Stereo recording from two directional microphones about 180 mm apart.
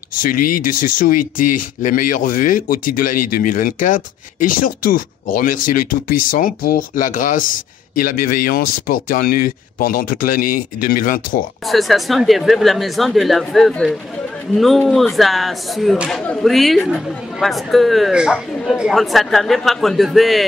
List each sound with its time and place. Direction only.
0.2 s speech: 50° left (ahead or behind)
11.6 s speech: centre (ahead or behind)